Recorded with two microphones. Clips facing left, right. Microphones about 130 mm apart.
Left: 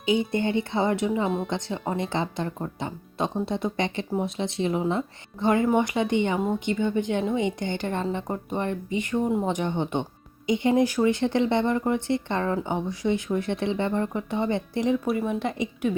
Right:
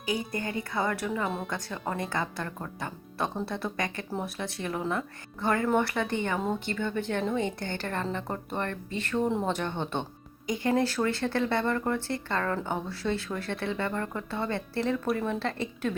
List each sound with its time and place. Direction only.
0.0 s speech: 25° left (ahead or behind)
15.0 s speech: 5° left (ahead or behind)
15.3 s speech: 15° left (ahead or behind)